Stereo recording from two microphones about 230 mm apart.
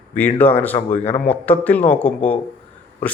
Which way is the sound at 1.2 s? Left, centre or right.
Centre.